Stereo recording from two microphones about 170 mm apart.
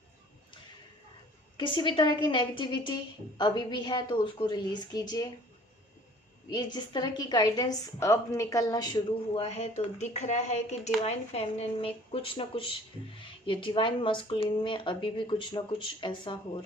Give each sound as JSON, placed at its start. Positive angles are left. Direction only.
{"t": 1.5, "sound": "a woman's voice", "side_deg": 30}
{"t": 6.5, "sound": "a woman's voice", "side_deg": 25}